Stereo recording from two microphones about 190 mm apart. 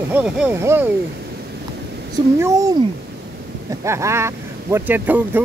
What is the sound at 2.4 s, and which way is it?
Speech, 15° right (ahead or behind).